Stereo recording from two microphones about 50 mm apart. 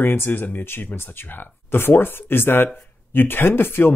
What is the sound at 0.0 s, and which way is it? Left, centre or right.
Speech, left.